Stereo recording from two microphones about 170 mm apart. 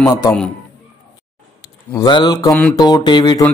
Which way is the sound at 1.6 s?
20° left (ahead or behind).